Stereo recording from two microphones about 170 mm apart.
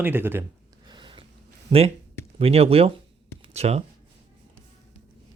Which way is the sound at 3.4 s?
40° right (ahead or behind).